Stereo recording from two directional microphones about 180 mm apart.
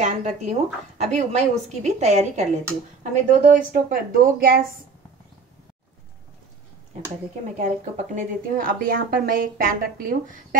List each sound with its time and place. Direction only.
0.0 s a woman's voice: 45° right (ahead or behind)
7.5 s speech: 45° right (ahead or behind)